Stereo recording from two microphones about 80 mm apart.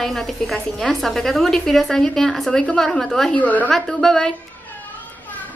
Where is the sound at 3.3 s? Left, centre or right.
Centre.